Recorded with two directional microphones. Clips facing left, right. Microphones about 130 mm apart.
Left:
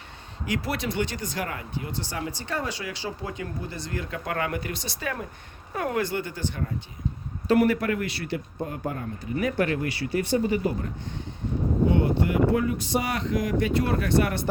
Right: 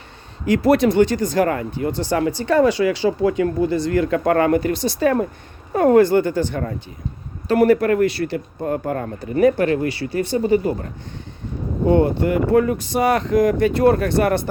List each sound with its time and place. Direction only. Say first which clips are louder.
0.4 s speech: right 14 dB; 45° right (ahead or behind); by 4.2 s 70° right (ahead or behind)
4.2 s speech: right 10 dB; 45° right (ahead or behind)
7.4 s speech: right 6 dB; 40° right (ahead or behind)
11.9 s speech: right 11 dB; 45° right (ahead or behind)